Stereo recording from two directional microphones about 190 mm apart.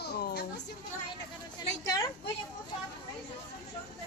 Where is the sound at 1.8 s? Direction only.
15° left (ahead or behind).